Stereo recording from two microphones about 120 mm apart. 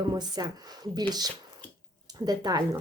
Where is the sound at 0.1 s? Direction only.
35° right (ahead or behind).